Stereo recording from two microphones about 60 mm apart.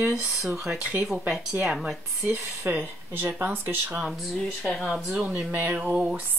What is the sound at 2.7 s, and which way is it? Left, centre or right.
Speech, right.